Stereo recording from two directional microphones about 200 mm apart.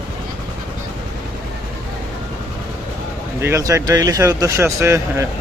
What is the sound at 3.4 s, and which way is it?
Speech, 15° right (ahead or behind).